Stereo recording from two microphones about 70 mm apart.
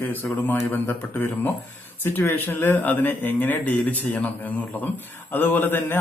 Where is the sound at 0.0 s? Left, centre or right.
Left.